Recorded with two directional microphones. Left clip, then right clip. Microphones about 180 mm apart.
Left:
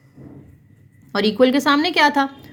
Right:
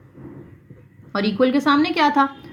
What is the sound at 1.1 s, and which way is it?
A woman's voice, 55° left (ahead or behind).